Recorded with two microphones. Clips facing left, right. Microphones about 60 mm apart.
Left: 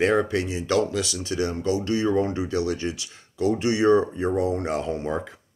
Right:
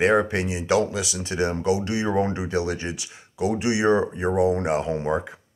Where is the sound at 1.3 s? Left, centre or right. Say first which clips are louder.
Right 2 dB; right.